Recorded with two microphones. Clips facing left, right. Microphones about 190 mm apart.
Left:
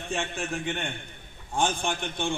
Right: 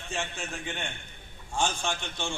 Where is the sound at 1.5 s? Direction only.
55° left (ahead or behind).